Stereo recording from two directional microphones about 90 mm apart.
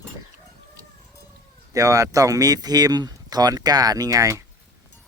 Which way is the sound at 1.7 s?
40° right (ahead or behind).